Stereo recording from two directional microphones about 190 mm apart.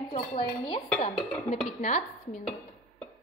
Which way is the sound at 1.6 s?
40° left (ahead or behind).